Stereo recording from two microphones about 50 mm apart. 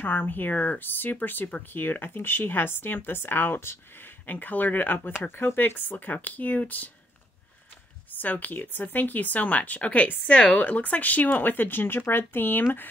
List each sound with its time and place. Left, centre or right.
0.0 s speech: left
8.1 s speech: left